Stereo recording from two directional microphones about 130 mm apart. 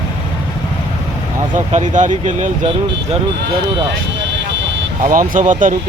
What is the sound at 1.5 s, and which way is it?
Speech, 70° right (ahead or behind).